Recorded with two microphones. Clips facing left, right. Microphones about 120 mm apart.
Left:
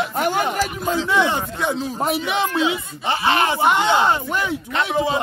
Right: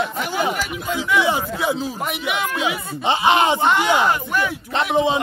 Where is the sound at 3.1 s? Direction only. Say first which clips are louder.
Right 3 dB; 20° right (ahead or behind).